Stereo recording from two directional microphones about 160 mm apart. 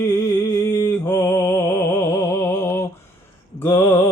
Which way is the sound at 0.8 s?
15° left (ahead or behind).